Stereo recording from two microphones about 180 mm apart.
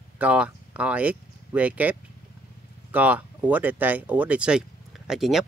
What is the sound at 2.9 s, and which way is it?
Speech, 10° right (ahead or behind).